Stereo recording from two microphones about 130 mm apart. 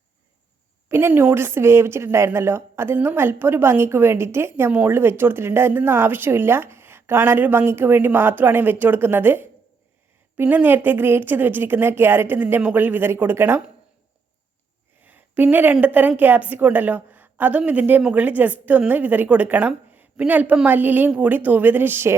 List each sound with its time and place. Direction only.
0.9 s speech: 20° right (ahead or behind)
15.0 s speech: 15° right (ahead or behind)